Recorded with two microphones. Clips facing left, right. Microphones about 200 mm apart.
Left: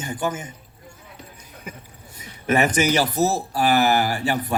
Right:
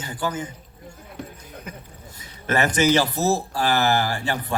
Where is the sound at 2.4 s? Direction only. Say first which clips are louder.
Left 1 dB; 10° left (ahead or behind).